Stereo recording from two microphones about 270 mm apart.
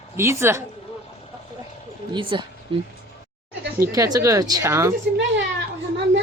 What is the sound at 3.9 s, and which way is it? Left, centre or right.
A woman's voice, centre.